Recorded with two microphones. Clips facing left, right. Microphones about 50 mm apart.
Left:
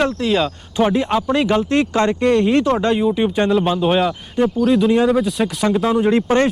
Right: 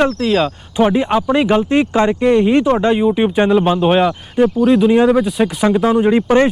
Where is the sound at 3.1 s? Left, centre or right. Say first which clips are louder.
Right 3 dB; right.